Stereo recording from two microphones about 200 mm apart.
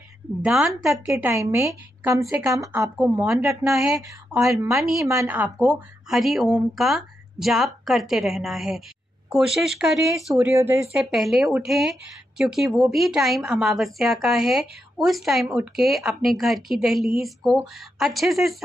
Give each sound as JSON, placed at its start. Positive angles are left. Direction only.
{"t": 0.4, "sound": "speech", "side_deg": -5}
{"t": 1.3, "sound": "a woman's voice", "side_deg": -15}
{"t": 3.7, "sound": "speech", "side_deg": 0}
{"t": 5.0, "sound": "speech", "side_deg": -15}
{"t": 10.3, "sound": "a woman's voice", "side_deg": -15}
{"t": 11.0, "sound": "speech", "side_deg": 0}